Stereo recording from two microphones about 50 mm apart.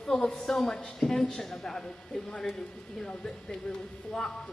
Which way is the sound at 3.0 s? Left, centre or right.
Centre.